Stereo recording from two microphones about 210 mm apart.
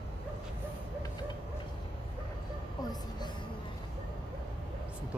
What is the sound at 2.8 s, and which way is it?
Music, 20° left (ahead or behind).